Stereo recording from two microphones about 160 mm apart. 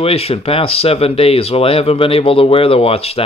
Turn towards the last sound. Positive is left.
turn(degrees=40)  # may be behind; listen again after turning